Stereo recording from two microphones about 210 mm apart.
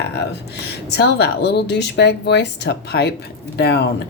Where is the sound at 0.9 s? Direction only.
50° left (ahead or behind).